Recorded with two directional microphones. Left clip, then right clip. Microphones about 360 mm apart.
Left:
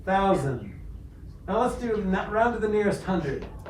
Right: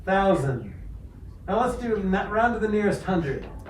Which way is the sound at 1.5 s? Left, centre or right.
Centre.